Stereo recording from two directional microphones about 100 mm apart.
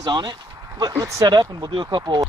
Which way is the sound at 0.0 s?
45° right (ahead or behind).